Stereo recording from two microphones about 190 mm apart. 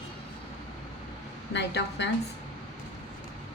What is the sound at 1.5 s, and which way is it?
Speech, 65° left (ahead or behind).